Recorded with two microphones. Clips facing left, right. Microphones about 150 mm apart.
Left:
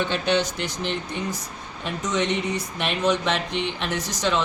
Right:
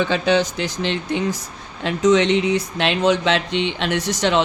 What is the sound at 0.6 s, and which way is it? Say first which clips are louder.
Speech: right 5 dB; 90° right.